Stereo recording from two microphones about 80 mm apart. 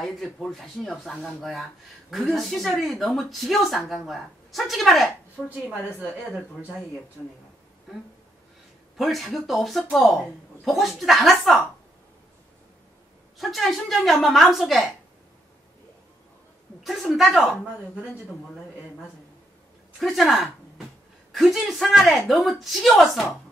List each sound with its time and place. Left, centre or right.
0.0 s speech: centre
5.4 s a woman's voice: left
7.9 s speech: centre
13.4 s speech: centre
16.8 s speech: centre
20.0 s speech: centre